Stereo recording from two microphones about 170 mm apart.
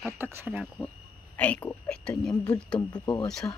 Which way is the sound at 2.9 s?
25° left (ahead or behind).